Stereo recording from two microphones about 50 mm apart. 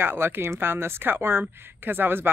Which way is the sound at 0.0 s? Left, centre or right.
Right.